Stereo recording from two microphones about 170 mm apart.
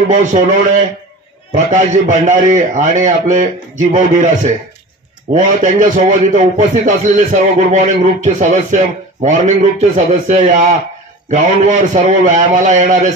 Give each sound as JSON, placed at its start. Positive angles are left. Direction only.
{"t": 0.1, "sound": "a man's voice", "side_deg": -45}